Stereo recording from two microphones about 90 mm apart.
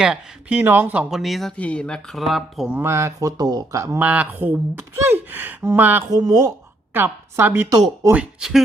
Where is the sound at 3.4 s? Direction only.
50° right (ahead or behind).